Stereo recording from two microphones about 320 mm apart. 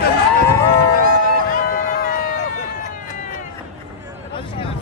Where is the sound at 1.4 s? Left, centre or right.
Left.